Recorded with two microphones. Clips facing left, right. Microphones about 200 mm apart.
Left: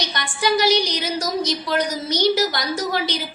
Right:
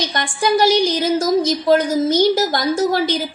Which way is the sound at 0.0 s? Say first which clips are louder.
Right 4 dB; 50° right (ahead or behind).